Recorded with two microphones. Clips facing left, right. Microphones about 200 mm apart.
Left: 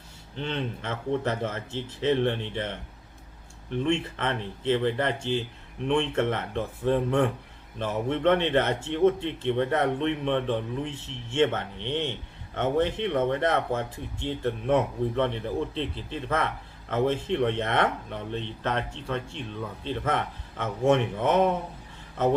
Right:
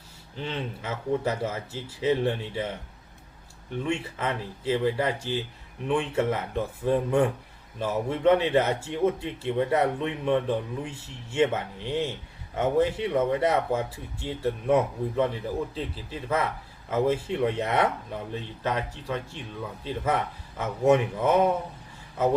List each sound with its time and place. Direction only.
0.3 s speech: 5° right (ahead or behind)
3.8 s speech: 10° right (ahead or behind)